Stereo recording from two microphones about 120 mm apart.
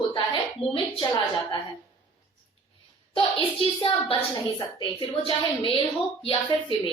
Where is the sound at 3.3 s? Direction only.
45° left (ahead or behind).